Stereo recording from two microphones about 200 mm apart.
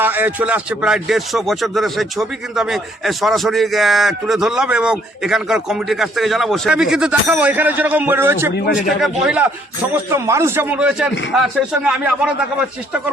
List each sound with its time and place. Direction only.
0.0 s speech: 10° right (ahead or behind)